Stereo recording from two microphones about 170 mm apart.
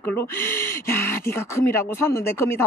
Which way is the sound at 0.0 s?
15° left (ahead or behind).